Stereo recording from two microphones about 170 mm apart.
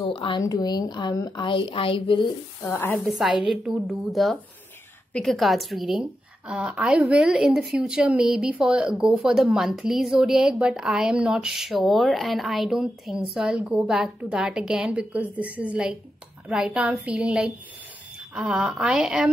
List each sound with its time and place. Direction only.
0.0 s a woman's voice: 30° left (ahead or behind)
2.7 s a woman's voice: 10° left (ahead or behind)
3.1 s a woman's voice: centre (ahead or behind)